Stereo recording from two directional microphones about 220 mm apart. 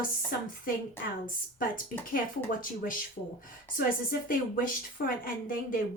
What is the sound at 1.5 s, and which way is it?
Speech, 40° left (ahead or behind).